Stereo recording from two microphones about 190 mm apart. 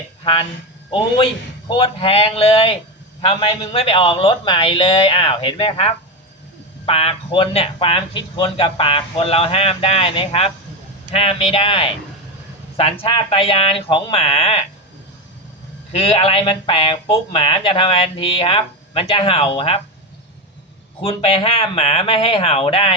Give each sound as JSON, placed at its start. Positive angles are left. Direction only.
{"t": 0.9, "sound": "speech", "side_deg": 25}
{"t": 15.9, "sound": "speech", "side_deg": 30}
{"t": 21.0, "sound": "speech", "side_deg": 30}